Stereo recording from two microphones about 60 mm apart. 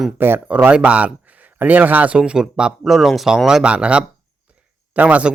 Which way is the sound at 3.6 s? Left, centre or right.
Centre.